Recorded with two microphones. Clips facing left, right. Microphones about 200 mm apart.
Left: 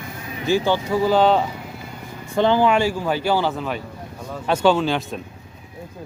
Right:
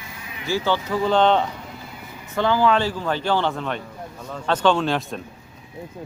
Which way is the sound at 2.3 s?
20° left (ahead or behind).